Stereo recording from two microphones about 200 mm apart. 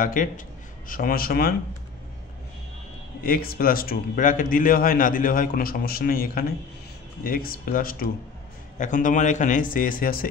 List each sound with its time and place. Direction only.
0.0 s a man's voice: 40° left (ahead or behind)
3.2 s a man's voice: 45° left (ahead or behind)